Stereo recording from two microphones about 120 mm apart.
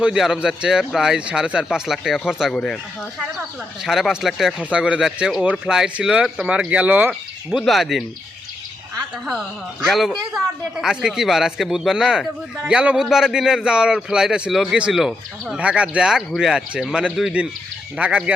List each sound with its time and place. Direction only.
0.0 s speech: 5° right (ahead or behind)
3.8 s speech: centre (ahead or behind)
7.1 s speech: centre (ahead or behind)
9.8 s speech: centre (ahead or behind)